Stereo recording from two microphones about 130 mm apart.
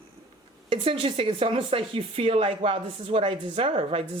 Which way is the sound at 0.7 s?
45° right (ahead or behind).